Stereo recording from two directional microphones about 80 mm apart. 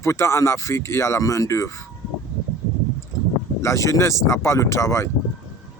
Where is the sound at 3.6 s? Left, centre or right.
Left.